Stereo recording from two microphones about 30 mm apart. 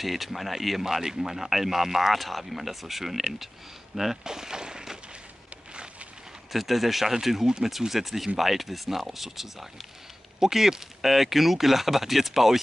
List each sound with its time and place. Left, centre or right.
0.0 s speech: centre
4.2 s speech: right
6.5 s speech: centre